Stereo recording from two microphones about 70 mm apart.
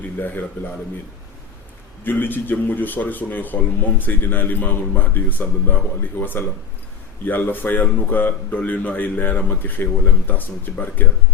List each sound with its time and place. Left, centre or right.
0.2 s a man's voice: left
2.0 s a man's voice: left